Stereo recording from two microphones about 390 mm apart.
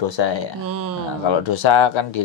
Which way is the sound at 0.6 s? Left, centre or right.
Right.